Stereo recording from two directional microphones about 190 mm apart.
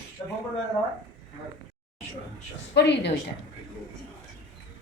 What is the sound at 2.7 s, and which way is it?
Speech, 65° left (ahead or behind).